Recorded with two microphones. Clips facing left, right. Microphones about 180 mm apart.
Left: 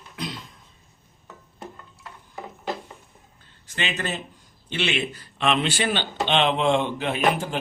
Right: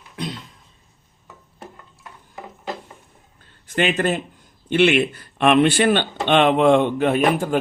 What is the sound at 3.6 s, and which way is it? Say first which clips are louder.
A man's voice: right 9 dB; 55° right (ahead or behind).